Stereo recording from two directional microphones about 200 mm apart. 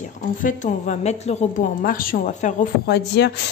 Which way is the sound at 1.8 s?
45° left (ahead or behind).